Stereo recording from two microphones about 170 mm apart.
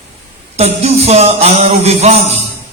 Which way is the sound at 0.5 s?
40° right (ahead or behind).